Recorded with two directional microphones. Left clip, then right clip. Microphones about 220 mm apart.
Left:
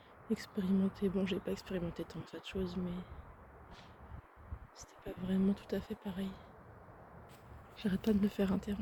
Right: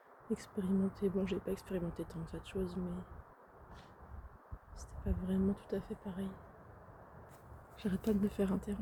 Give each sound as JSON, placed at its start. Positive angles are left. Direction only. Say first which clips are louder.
{"t": 0.3, "sound": "speech", "louder": "left 1 dB", "side_deg": 0}
{"t": 4.8, "sound": "speech", "louder": "right 1 dB", "side_deg": 0}
{"t": 7.8, "sound": "speech", "louder": "left 1 dB", "side_deg": 0}